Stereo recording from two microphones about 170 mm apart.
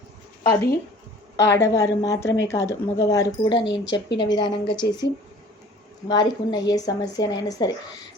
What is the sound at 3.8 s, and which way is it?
Speech, 90° left.